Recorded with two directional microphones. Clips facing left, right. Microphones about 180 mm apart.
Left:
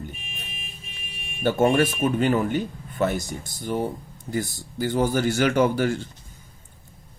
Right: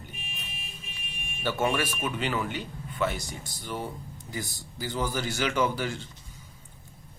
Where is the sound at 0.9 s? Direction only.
50° left (ahead or behind).